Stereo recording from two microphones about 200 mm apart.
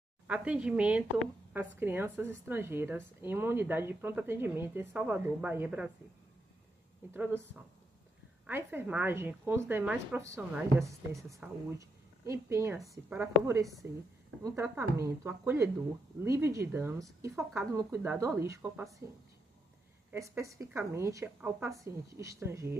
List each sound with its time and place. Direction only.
0.3 s a woman's voice: 5° right (ahead or behind)
7.2 s a woman's voice: 10° right (ahead or behind)
20.1 s a woman's voice: 15° right (ahead or behind)